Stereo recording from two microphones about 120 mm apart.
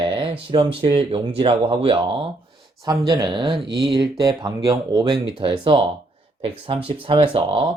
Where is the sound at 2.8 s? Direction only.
35° right (ahead or behind).